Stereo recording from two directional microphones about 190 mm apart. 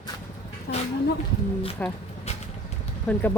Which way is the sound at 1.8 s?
5° left (ahead or behind).